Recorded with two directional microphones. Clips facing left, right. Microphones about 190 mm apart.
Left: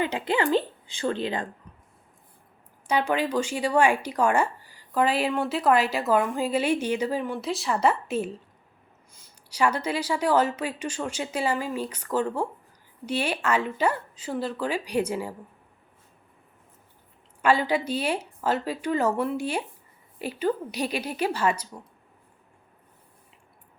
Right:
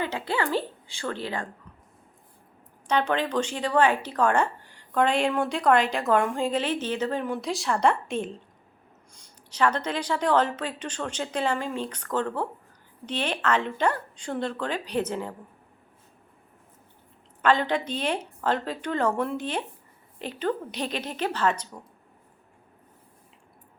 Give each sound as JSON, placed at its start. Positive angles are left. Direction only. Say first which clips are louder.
{"t": 0.0, "sound": "a woman's voice", "louder": "left 3 dB", "side_deg": 20}
{"t": 2.8, "sound": "speech", "louder": "even", "side_deg": 10}
{"t": 17.4, "sound": "speech", "louder": "left 1 dB", "side_deg": 10}